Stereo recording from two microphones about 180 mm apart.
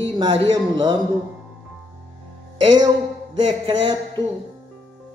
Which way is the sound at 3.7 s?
25° right (ahead or behind).